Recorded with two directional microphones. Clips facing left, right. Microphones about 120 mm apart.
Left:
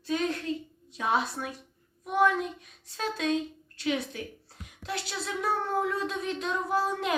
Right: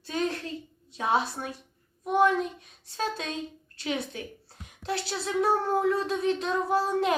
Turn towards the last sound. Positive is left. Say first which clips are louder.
# right 3 dB
turn(degrees=-30)  # may be behind; listen again after turning